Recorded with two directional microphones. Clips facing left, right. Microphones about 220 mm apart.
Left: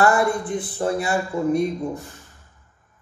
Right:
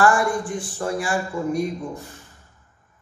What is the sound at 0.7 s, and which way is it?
Speech, 25° left (ahead or behind).